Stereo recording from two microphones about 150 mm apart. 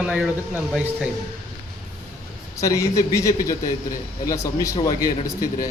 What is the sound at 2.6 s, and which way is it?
A man's voice, 20° left (ahead or behind).